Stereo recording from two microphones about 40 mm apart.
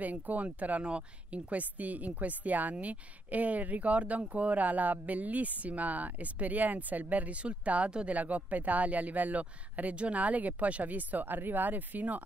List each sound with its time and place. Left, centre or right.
0.0 s speech: right